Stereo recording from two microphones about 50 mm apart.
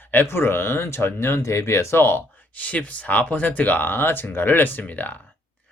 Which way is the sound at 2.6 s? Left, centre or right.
Left.